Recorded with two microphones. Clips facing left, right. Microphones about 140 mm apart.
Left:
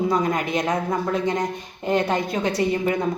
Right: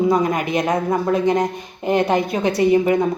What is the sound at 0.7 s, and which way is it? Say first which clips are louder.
A woman's voice: right 4 dB; 25° right (ahead or behind).